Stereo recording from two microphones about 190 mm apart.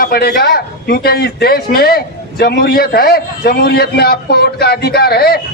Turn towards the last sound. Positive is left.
turn(degrees=55)  # may be behind; listen again after turning